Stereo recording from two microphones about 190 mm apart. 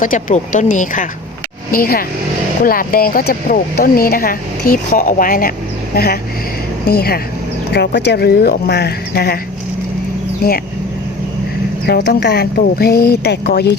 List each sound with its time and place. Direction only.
0.0 s speech: 40° left (ahead or behind)
10.4 s speech: 55° left (ahead or behind)
11.9 s speech: 65° left (ahead or behind)